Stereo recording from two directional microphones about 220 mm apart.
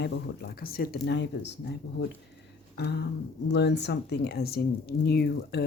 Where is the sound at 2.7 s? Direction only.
50° left (ahead or behind).